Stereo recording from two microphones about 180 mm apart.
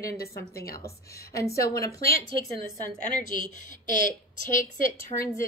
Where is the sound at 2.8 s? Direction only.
45° left (ahead or behind).